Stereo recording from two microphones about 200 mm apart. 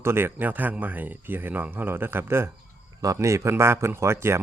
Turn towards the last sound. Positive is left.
turn(degrees=-15)  # may be behind; listen again after turning